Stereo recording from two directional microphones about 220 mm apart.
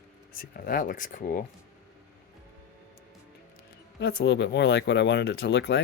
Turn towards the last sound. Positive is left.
turn(degrees=55)  # may be behind; listen again after turning